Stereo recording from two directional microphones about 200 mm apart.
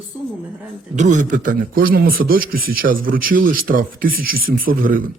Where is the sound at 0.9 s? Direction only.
40° right (ahead or behind).